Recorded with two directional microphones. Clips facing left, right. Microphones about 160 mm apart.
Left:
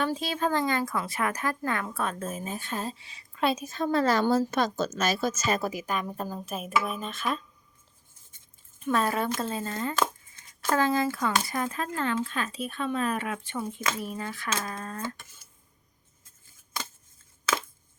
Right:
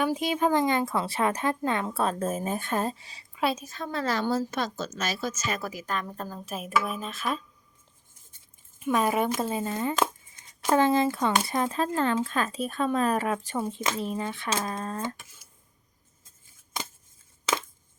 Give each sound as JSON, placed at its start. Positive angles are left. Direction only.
{"t": 0.0, "sound": "speech", "side_deg": -15}
{"t": 3.3, "sound": "a woman's voice", "side_deg": 0}
{"t": 3.6, "sound": "a woman's voice", "side_deg": 25}
{"t": 3.9, "sound": "a woman's voice", "side_deg": 45}
{"t": 5.8, "sound": "a woman's voice", "side_deg": 10}
{"t": 6.4, "sound": "speech", "side_deg": 0}
{"t": 8.8, "sound": "speech", "side_deg": -15}